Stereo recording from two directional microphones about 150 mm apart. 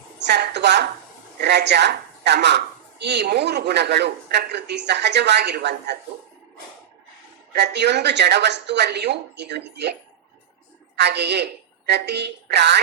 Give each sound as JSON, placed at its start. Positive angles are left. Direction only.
{"t": 0.3, "sound": "speech", "side_deg": -90}
{"t": 7.5, "sound": "speech", "side_deg": -90}
{"t": 11.0, "sound": "speech", "side_deg": -90}